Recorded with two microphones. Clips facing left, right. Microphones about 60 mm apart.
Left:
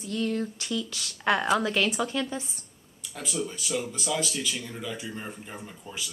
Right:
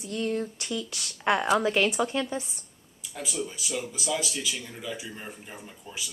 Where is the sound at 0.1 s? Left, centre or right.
Right.